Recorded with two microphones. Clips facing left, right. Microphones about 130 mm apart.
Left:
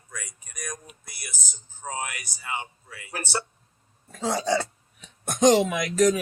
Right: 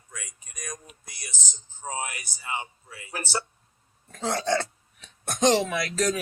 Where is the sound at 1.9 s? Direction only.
25° right (ahead or behind).